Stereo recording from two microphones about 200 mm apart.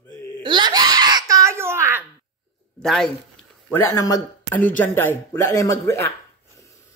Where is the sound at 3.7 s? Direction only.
15° left (ahead or behind).